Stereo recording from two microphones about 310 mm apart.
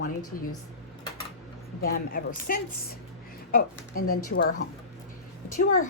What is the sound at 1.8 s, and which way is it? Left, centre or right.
Speech, left.